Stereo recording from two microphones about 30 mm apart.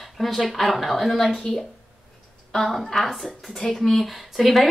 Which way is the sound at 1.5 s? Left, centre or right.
Left.